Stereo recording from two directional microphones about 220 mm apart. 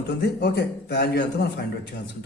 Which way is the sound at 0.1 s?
45° left (ahead or behind).